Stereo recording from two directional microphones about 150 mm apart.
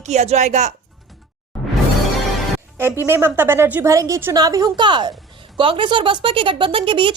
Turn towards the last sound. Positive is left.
turn(degrees=-35)  # may be behind; listen again after turning